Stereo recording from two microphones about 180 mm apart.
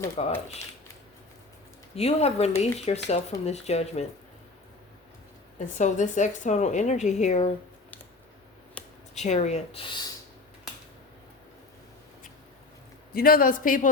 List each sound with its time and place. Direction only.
0.2 s a woman's voice: 35° left (ahead or behind)
2.0 s a woman's voice: 35° left (ahead or behind)
5.5 s a woman's voice: 40° left (ahead or behind)
8.8 s a sound: 10° left (ahead or behind)
9.1 s a woman's voice: 40° left (ahead or behind)
13.1 s a man's voice: 55° left (ahead or behind)